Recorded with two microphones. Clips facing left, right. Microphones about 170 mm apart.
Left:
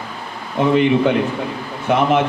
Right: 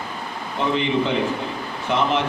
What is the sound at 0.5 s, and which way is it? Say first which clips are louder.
A man's voice: left 7 dB; 55° left (ahead or behind).